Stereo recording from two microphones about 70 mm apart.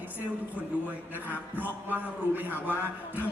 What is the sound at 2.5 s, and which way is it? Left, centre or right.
Speech, left.